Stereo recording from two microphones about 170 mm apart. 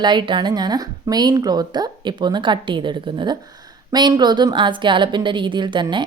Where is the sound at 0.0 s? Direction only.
25° right (ahead or behind).